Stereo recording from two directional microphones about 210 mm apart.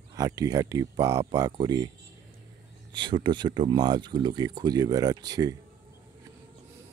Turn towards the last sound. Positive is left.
turn(degrees=-20)  # may be behind; listen again after turning